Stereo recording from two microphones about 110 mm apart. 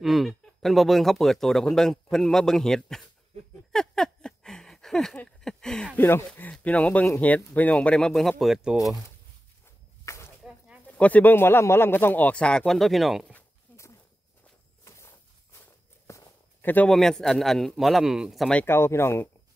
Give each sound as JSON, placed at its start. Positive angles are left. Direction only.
{"t": 0.0, "sound": "speech", "side_deg": 0}
{"t": 3.7, "sound": "a sound", "side_deg": 5}
{"t": 5.9, "sound": "a man's voice", "side_deg": 20}
{"t": 10.0, "sound": "whip", "side_deg": 25}
{"t": 10.9, "sound": "a man's voice", "side_deg": 15}
{"t": 13.7, "sound": "a sound", "side_deg": 20}
{"t": 14.9, "sound": "walk", "side_deg": 25}
{"t": 16.6, "sound": "speech", "side_deg": 15}
{"t": 16.9, "sound": "speech", "side_deg": 5}
{"t": 18.5, "sound": "a man's voice", "side_deg": 10}
{"t": 18.8, "sound": "speech", "side_deg": 25}